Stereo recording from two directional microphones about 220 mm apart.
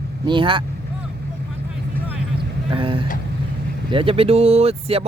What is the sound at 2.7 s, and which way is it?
Speech, 25° right (ahead or behind).